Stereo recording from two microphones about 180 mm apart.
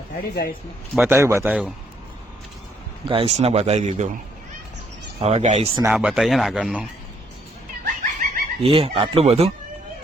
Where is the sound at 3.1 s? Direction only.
35° right (ahead or behind).